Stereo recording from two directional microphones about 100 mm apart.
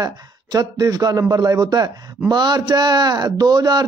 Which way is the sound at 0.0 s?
40° right (ahead or behind).